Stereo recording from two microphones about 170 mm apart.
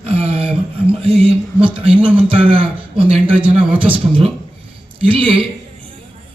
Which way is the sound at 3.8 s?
30° right (ahead or behind).